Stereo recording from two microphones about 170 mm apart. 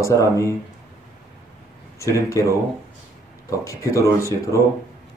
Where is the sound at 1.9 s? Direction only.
15° left (ahead or behind).